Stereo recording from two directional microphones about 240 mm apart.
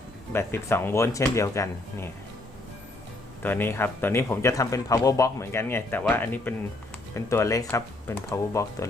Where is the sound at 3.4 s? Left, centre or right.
Centre.